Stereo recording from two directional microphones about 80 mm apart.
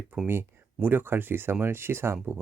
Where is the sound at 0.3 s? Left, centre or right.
Right.